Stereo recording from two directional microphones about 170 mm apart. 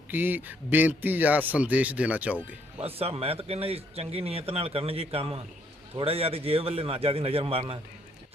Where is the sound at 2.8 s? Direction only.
35° right (ahead or behind).